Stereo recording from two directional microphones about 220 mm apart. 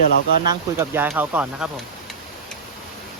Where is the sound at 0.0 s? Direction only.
45° left (ahead or behind).